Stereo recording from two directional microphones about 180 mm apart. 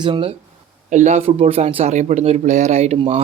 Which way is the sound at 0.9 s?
40° right (ahead or behind).